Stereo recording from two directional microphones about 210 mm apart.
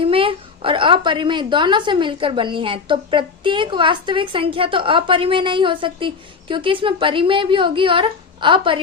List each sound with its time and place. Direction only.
0.0 s a woman's voice: 25° right (ahead or behind)